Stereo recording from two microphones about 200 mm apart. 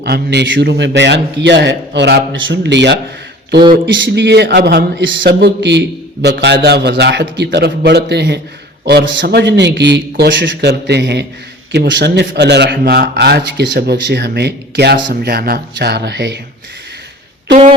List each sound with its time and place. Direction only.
0.0 s a man's voice: 55° right (ahead or behind)